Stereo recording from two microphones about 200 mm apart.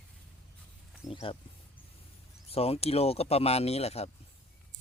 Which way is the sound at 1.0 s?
20° left (ahead or behind).